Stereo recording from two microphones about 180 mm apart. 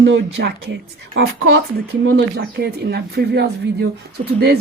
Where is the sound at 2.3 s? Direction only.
60° right (ahead or behind).